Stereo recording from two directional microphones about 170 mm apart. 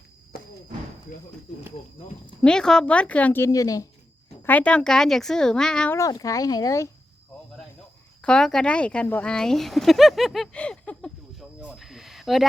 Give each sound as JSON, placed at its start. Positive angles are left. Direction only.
{"t": 0.3, "sound": "a sound", "side_deg": 65}
{"t": 2.4, "sound": "speech", "side_deg": 5}
{"t": 4.4, "sound": "speech", "side_deg": 10}
{"t": 6.0, "sound": "speech", "side_deg": 20}
{"t": 8.2, "sound": "speech", "side_deg": 5}
{"t": 11.6, "sound": "a sound", "side_deg": -5}